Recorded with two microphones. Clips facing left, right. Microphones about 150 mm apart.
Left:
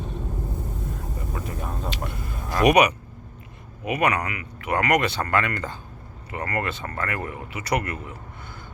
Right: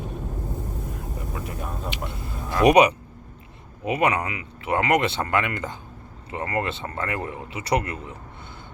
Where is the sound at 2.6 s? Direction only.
30° right (ahead or behind).